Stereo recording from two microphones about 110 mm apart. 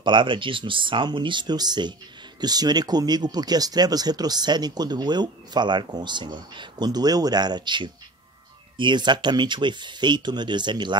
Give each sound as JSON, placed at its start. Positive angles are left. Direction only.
{"t": 0.0, "sound": "speech", "side_deg": -50}